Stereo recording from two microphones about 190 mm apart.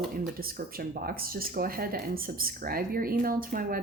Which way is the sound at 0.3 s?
50° right (ahead or behind).